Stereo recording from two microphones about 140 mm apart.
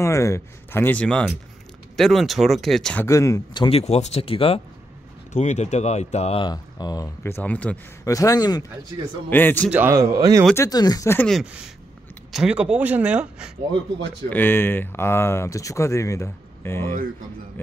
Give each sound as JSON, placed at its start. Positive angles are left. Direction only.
{"t": 0.0, "sound": "speech", "side_deg": 20}
{"t": 3.0, "sound": "speech", "side_deg": 20}
{"t": 3.6, "sound": "speech", "side_deg": 45}
{"t": 5.3, "sound": "speech", "side_deg": 55}
{"t": 6.4, "sound": "speech", "side_deg": 30}
{"t": 8.0, "sound": "speech", "side_deg": 25}
{"t": 9.3, "sound": "speech", "side_deg": 15}
{"t": 9.7, "sound": "speech", "side_deg": -15}
{"t": 10.5, "sound": "speech", "side_deg": 25}
{"t": 11.1, "sound": "speech", "side_deg": 5}
{"t": 14.3, "sound": "speech", "side_deg": 15}